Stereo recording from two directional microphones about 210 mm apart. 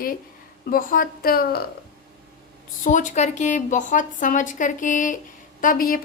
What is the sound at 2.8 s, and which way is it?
A woman's voice, 35° left (ahead or behind).